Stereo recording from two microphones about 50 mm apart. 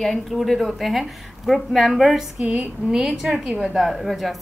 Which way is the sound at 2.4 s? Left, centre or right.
Right.